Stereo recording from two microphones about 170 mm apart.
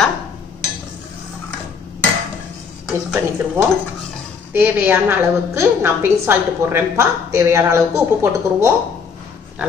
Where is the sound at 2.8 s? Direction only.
10° right (ahead or behind).